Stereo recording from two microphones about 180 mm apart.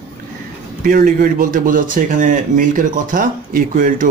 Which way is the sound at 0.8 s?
50° right (ahead or behind).